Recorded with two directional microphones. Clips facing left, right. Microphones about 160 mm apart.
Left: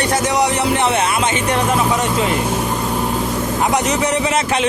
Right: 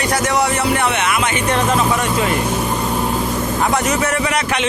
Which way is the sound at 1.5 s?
15° left (ahead or behind).